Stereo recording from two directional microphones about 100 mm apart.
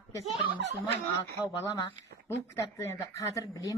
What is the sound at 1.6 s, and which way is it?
A woman's voice, 30° left (ahead or behind).